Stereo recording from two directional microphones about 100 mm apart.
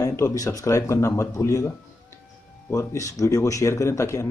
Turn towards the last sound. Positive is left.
turn(degrees=30)  # may be behind; listen again after turning